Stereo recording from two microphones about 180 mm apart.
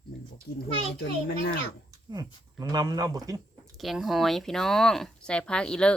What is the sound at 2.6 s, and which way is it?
Speech, 20° right (ahead or behind).